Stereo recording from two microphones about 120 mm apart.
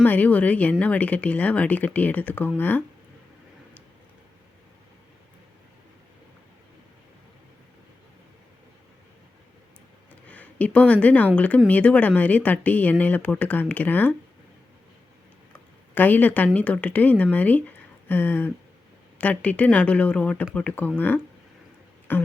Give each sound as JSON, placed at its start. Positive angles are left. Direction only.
{"t": 0.0, "sound": "speech", "side_deg": 15}
{"t": 10.2, "sound": "a woman's voice", "side_deg": 10}
{"t": 16.0, "sound": "speech", "side_deg": 15}
{"t": 22.1, "sound": "speech", "side_deg": 15}